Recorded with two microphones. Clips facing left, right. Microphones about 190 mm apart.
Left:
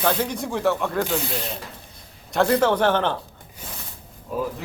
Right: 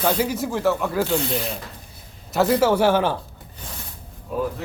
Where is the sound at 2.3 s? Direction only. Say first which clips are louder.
Right 1 dB; 5° right (ahead or behind).